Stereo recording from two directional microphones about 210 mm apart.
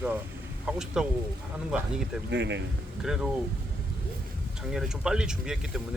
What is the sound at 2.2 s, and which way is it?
Speech, 55° right (ahead or behind).